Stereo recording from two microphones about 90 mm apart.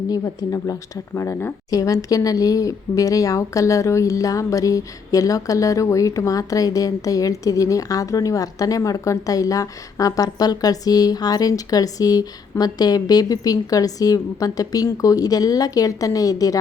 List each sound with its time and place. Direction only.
0.1 s speech: 40° left (ahead or behind)